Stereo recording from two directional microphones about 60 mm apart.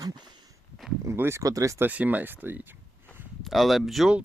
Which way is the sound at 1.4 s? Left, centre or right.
Right.